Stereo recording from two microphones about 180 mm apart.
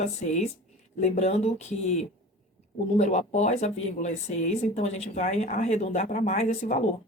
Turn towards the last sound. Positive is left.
turn(degrees=40)  # may be behind; listen again after turning